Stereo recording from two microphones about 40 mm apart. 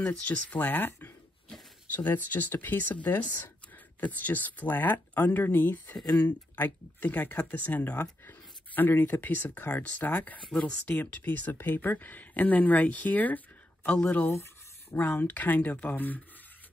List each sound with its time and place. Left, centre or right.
0.0 s speech: left
14.3 s a sound: left
15.0 s speech: left